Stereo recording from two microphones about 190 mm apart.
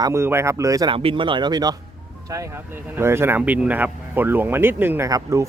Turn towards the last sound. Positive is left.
turn(degrees=-15)  # may be behind; listen again after turning